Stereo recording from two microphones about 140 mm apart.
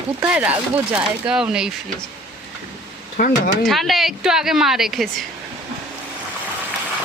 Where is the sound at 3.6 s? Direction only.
Centre (ahead or behind).